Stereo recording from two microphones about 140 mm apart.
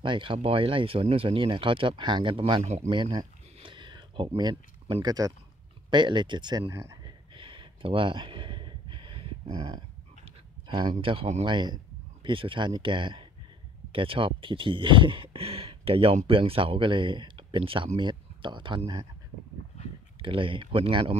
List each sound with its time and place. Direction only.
0.0 s speech: 35° right (ahead or behind)
2.6 s speech: 55° right (ahead or behind)
2.9 s speech: 35° right (ahead or behind)
3.5 s a sound: 35° right (ahead or behind)
5.0 s speech: 25° right (ahead or behind)
7.3 s a sound: 35° right (ahead or behind)
11.4 s speech: 30° right (ahead or behind)
20.2 s speech: 40° right (ahead or behind)